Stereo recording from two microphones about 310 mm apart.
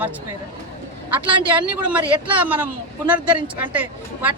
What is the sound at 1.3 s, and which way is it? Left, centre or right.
A woman's voice, centre.